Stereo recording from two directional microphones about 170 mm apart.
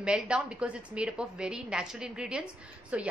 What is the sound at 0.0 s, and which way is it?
A woman's voice, 5° right (ahead or behind).